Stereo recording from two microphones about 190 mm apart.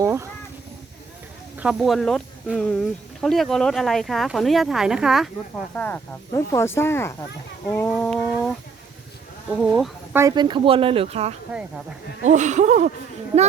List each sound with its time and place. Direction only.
0.0 s speech: 15° right (ahead or behind)
1.5 s speech: 5° right (ahead or behind)
5.7 s speech: 10° left (ahead or behind)
7.7 s a sound: 5° left (ahead or behind)
9.7 s speech: centre (ahead or behind)
10.2 s speech: 20° right (ahead or behind); by 12.9 s 40° right (ahead or behind)